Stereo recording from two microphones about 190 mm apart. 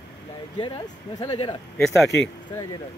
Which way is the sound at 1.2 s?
20° left (ahead or behind).